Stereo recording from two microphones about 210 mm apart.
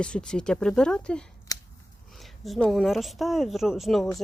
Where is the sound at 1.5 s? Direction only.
20° left (ahead or behind).